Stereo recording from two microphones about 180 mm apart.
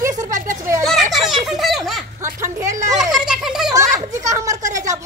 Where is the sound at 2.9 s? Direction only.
Centre (ahead or behind).